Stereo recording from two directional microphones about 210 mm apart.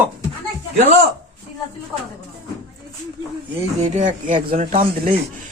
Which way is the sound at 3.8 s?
35° right (ahead or behind).